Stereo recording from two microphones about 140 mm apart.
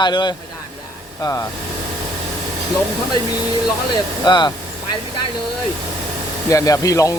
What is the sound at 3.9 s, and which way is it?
Speech, 30° left (ahead or behind).